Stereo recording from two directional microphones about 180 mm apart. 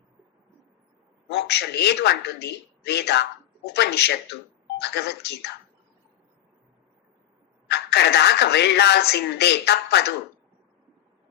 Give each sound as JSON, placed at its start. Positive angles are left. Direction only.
{"t": 1.3, "sound": "speech", "side_deg": 70}
{"t": 7.7, "sound": "speech", "side_deg": 65}